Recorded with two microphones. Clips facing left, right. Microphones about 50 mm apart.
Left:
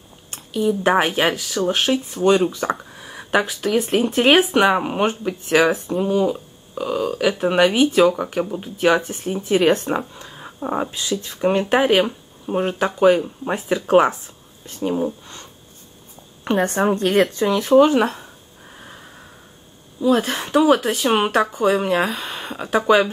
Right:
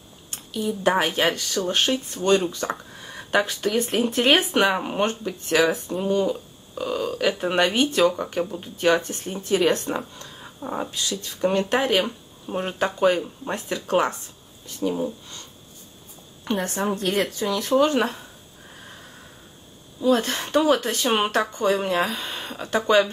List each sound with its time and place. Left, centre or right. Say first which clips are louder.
0.3 s speech: left 7 dB; centre
1.0 s speech: left 3 dB; centre
12.5 s speech: left 4 dB; centre
15.0 s speech: left 4 dB; left
16.6 s a woman's voice: left 7 dB; left
17.5 s speech: left 6 dB; left
17.8 s a sound: left 4 dB; centre
20.0 s speech: left 3 dB; centre